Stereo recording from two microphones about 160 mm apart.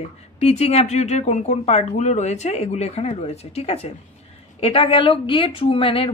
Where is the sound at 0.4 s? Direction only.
40° left (ahead or behind).